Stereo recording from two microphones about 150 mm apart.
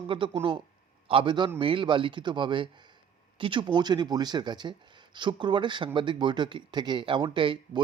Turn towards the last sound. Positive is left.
turn(degrees=-30)  # may be behind; listen again after turning